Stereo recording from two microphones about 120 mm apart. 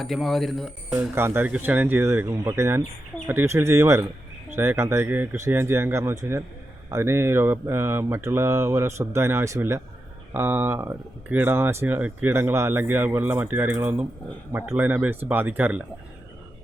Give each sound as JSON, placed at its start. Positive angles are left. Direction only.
{"t": 0.0, "sound": "speech", "side_deg": 0}
{"t": 0.9, "sound": "mantra", "side_deg": -20}
{"t": 11.3, "sound": "speech", "side_deg": -15}